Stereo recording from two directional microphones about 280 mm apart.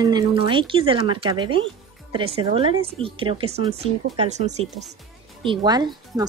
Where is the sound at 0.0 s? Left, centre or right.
Centre.